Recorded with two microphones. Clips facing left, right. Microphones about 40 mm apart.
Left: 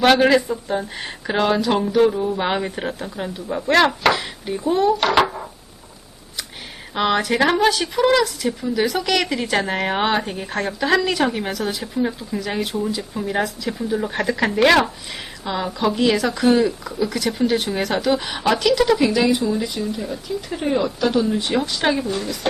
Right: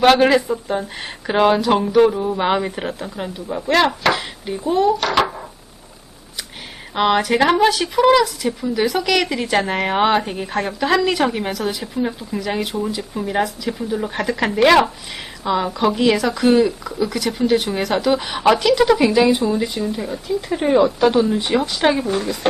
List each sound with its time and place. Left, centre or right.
0.1 s speech: centre
3.5 s chopping: centre
3.8 s chopping: centre
5.1 s a sound: centre
6.9 s speech: centre
15.7 s a woman's voice: right
16.4 s speech: centre
19.1 s speech: right
21.3 s speech: centre
22.0 s speech: right